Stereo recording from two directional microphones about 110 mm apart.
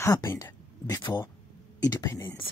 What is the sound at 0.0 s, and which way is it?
Speech, 30° left (ahead or behind).